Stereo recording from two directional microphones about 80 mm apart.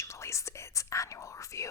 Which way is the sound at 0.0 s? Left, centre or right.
Left.